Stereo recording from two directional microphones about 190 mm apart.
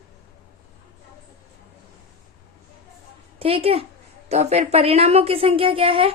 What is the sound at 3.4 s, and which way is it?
A woman's voice, 30° right (ahead or behind).